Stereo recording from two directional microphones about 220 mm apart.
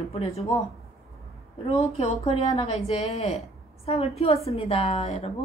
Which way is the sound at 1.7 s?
30° left (ahead or behind).